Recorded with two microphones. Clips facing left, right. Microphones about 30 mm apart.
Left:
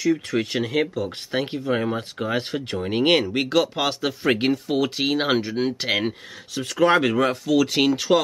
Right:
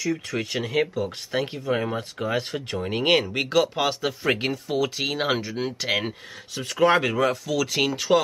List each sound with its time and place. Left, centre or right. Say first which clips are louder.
0.0 s speech: left 5 dB; centre
7.0 s speech: left 2 dB; centre